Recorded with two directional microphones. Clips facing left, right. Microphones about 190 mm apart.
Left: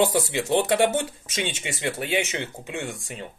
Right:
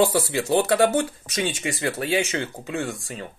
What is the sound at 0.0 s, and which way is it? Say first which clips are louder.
Speech: right 2 dB; 20° left (ahead or behind).